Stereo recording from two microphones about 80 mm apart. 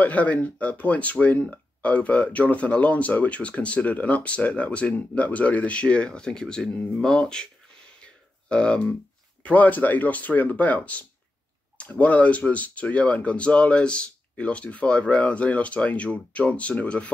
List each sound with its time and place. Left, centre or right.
0.0 s speech: centre
8.5 s speech: centre